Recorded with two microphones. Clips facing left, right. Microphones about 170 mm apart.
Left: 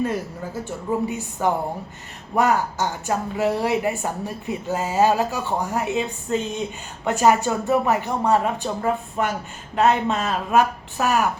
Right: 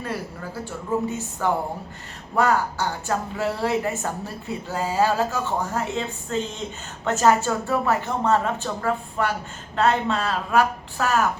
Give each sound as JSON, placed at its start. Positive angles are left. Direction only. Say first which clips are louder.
{"t": 0.6, "sound": "a woman's voice", "louder": "left 1 dB", "side_deg": 15}